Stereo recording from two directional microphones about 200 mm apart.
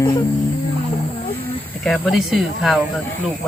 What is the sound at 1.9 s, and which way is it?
Speech, centre (ahead or behind).